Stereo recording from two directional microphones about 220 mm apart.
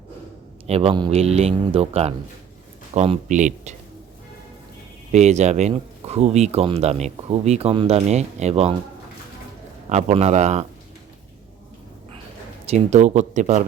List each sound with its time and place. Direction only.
0.7 s speech: 25° right (ahead or behind)
5.1 s speech: 30° right (ahead or behind)
9.9 s speech: 30° right (ahead or behind)
12.7 s speech: 30° right (ahead or behind)